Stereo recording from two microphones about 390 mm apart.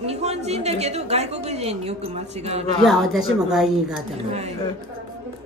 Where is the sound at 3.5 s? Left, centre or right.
Centre.